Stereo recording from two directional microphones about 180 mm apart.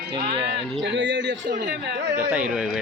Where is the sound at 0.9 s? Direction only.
90° right.